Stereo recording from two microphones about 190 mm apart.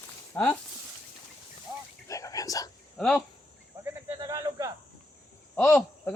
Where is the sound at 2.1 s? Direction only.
20° left (ahead or behind).